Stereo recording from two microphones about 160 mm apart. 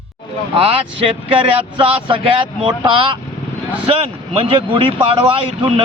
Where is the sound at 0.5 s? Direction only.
35° right (ahead or behind).